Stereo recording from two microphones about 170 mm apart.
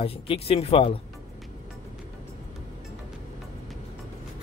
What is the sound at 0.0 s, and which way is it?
Speech, 35° left (ahead or behind).